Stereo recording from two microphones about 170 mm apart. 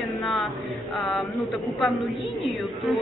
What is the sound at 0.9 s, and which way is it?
A woman's voice, centre (ahead or behind).